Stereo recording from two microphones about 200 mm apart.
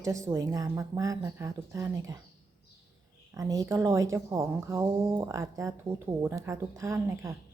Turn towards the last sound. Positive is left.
turn(degrees=-15)  # may be behind; listen again after turning